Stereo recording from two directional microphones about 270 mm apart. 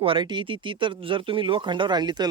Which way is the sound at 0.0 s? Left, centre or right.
Centre.